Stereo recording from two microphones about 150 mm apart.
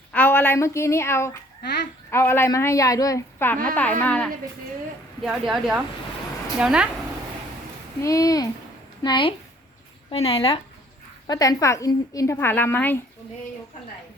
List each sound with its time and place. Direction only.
0.1 s a woman's voice: 15° left (ahead or behind)
5.2 s speech: 5° right (ahead or behind)
8.0 s a woman's voice: 25° left (ahead or behind); by 10.6 s 40° left (ahead or behind)
11.3 s a woman's voice: 25° left (ahead or behind)